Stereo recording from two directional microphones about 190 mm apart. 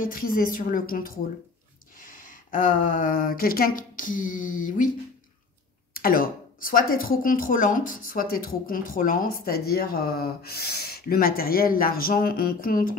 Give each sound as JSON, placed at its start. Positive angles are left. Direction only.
{"t": 0.0, "sound": "speech", "side_deg": 50}
{"t": 5.9, "sound": "speech", "side_deg": 50}